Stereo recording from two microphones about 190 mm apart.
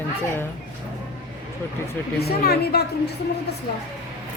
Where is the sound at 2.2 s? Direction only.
55° left (ahead or behind).